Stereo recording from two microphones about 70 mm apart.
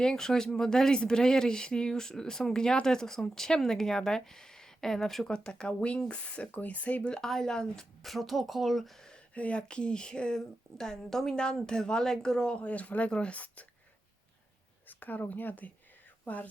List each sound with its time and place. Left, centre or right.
0.0 s a woman's voice: centre
7.1 s a woman's voice: centre
14.8 s speech: left